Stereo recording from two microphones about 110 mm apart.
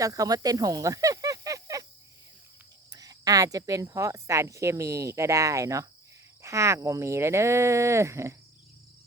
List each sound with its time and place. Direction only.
0.0 s speech: 35° right (ahead or behind)
2.9 s speech: 35° right (ahead or behind)